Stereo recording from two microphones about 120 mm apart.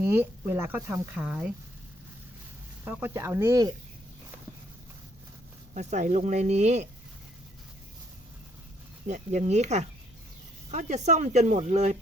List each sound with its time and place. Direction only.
0.0 s speech: 20° right (ahead or behind)
2.8 s speech: 15° right (ahead or behind)
5.7 s speech: 80° right
9.0 s speech: 75° right (ahead or behind)